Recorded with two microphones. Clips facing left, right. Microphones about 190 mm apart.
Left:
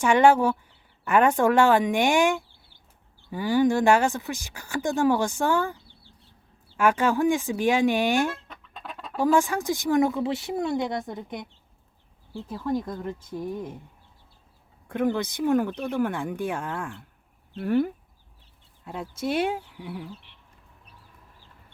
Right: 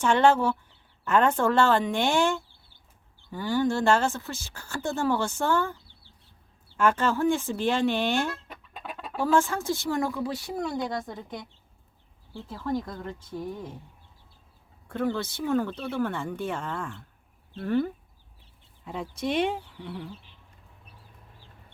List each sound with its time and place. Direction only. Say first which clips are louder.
0.0 s speech: left 3 dB; 10° left (ahead or behind)
6.7 s speech: left 2 dB; 10° left (ahead or behind)
8.9 s chicken: right 1 dB; 10° right (ahead or behind)
9.1 s speech: left 2 dB; 15° left (ahead or behind)
14.8 s speech: left 3 dB; 15° left (ahead or behind)